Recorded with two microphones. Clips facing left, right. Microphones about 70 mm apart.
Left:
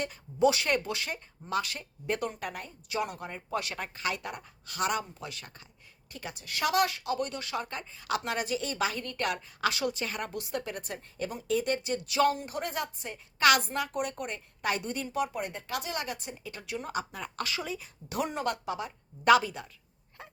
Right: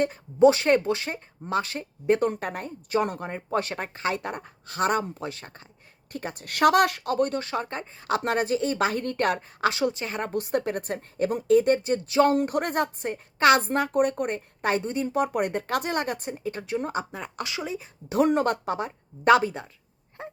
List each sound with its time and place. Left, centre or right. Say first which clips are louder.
0.0 s speech: right 8 dB; right
6.1 s speech: right 7 dB; right
10.3 s speech: right 9 dB; right
12.3 s a woman's voice: right 9 dB; right
13.4 s speech: right 5 dB; right
13.7 s speech: right 9 dB; right
15.0 s a woman's voice: right 5 dB; right
15.3 s speech: right 9 dB; right
18.3 s speech: right 9 dB; right
20.2 s dog: right 10 dB; right